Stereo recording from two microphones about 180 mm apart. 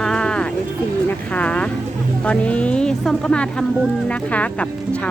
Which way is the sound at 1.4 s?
5° left (ahead or behind).